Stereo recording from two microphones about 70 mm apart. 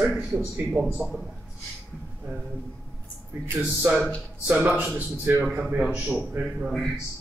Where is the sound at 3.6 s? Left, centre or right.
Right.